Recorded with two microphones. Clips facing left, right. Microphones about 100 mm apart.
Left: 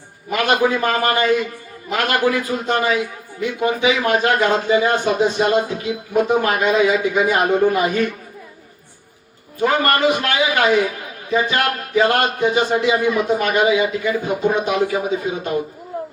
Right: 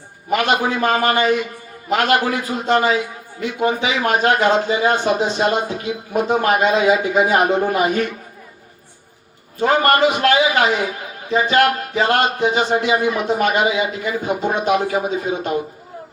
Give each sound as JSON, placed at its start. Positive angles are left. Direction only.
{"t": 0.3, "sound": "speech", "side_deg": -25}
{"t": 9.6, "sound": "speech", "side_deg": -30}